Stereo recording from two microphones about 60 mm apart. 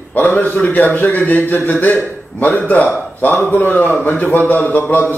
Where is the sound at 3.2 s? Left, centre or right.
Left.